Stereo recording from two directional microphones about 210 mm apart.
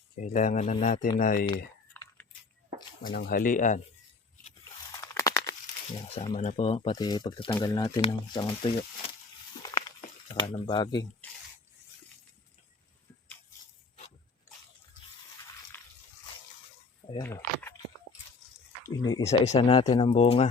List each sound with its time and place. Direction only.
0.2 s speech: 40° left (ahead or behind)
0.9 s speech: 20° left (ahead or behind)
1.2 s speech: 45° left (ahead or behind)
2.0 s a sound: 10° left (ahead or behind)
3.1 s speech: 45° left (ahead or behind)
4.9 s speech: 15° left (ahead or behind)
10.4 s speech: 25° left (ahead or behind)
15.7 s a sound: 10° left (ahead or behind)
17.1 s speech: 15° left (ahead or behind)
18.9 s speech: 15° left (ahead or behind)
19.2 s speech: 30° left (ahead or behind)